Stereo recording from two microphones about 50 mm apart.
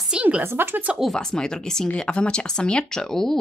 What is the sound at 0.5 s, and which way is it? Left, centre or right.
Speech, right.